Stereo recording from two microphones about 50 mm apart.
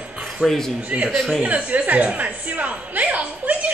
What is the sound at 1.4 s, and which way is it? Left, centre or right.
Speech, right.